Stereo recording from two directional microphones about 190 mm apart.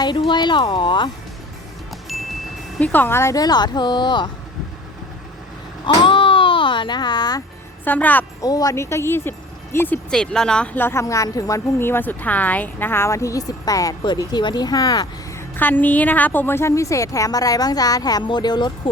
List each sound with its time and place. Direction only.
0.0 s speech: 25° left (ahead or behind)
2.1 s music: centre (ahead or behind)
2.7 s speech: 10° left (ahead or behind); by 4.3 s 25° left (ahead or behind)
5.8 s vehicle: 25° left (ahead or behind)
7.9 s a woman's voice: 10° left (ahead or behind)
15.5 s a woman's voice: 10° left (ahead or behind)